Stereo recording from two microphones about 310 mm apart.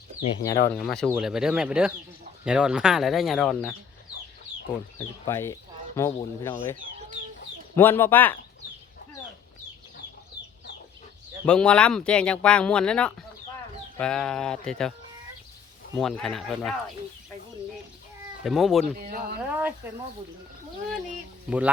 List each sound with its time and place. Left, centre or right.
0.6 s speech: centre
4.9 s speech: centre
7.8 s speech: centre
11.4 s speech: centre
16.0 s speech: centre
18.4 s speech: centre
18.9 s speech: right
19.4 s speech: centre
21.5 s speech: centre